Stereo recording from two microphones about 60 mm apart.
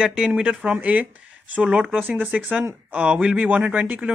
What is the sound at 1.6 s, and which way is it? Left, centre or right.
Speech, centre.